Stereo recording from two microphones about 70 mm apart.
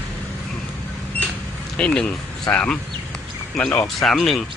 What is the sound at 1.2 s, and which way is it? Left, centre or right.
Cash register, left.